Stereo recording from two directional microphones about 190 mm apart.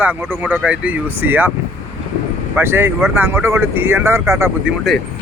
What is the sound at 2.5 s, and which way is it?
Speech, 10° right (ahead or behind).